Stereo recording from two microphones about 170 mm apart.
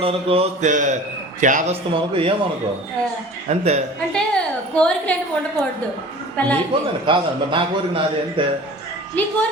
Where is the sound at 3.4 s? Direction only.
40° right (ahead or behind).